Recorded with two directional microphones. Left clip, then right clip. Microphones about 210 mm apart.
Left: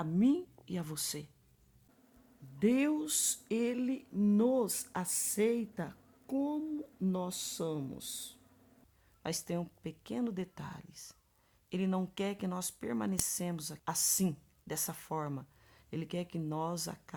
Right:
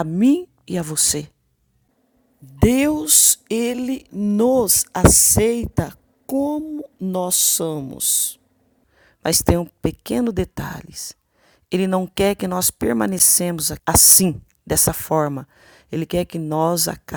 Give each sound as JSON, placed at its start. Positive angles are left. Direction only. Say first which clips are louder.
{"t": 0.0, "sound": "speech", "louder": "right 14 dB", "side_deg": -35}
{"t": 2.6, "sound": "speech", "louder": "right 14 dB", "side_deg": -45}